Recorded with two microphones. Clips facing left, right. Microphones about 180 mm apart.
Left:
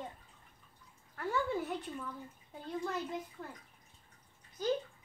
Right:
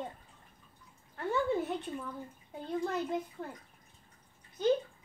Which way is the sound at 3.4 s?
25° right (ahead or behind).